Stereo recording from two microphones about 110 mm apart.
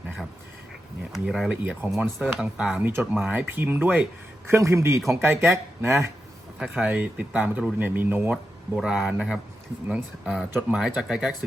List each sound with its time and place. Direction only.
1.1 s speech: 5° right (ahead or behind)
1.6 s speech: 15° right (ahead or behind)
2.9 s a man's voice: 20° right (ahead or behind)
3.2 s a man's voice: 10° right (ahead or behind)
6.6 s speech: 10° right (ahead or behind)
8.7 s speech: 5° right (ahead or behind)